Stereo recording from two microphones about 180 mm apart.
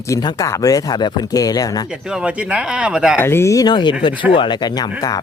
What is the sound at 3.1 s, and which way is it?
A man's voice, 15° left (ahead or behind).